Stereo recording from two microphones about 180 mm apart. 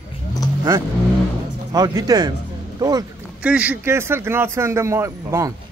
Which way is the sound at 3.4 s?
5° right (ahead or behind).